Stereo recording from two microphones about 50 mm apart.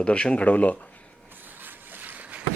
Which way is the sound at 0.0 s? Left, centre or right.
Left.